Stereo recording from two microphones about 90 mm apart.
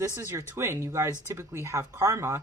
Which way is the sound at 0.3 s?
30° right (ahead or behind).